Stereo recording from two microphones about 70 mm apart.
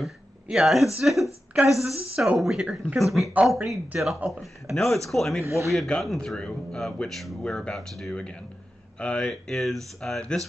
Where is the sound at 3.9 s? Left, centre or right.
Centre.